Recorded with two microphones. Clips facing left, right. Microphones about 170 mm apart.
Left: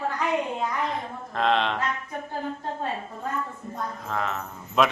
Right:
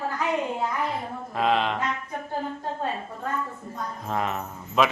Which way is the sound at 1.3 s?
5° right (ahead or behind).